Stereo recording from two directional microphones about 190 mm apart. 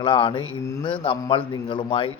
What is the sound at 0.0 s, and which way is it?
Speech, 25° left (ahead or behind).